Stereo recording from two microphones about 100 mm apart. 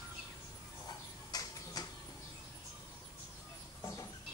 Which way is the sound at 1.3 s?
40° left (ahead or behind).